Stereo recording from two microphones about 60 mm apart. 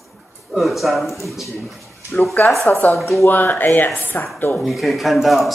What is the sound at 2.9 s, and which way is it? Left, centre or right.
Speech, centre.